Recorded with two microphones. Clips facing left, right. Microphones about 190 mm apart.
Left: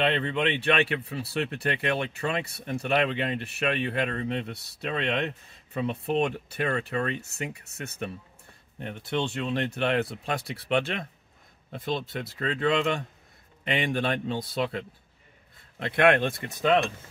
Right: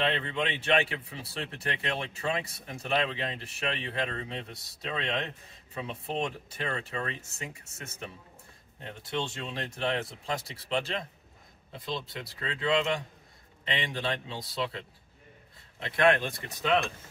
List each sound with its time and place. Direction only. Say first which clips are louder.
0.0 s speech: left 4 dB; 65° left (ahead or behind)
15.8 s speech: left 3 dB; 60° left (ahead or behind)